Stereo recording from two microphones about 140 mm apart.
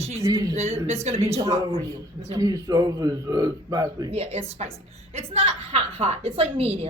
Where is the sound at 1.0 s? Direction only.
45° right (ahead or behind).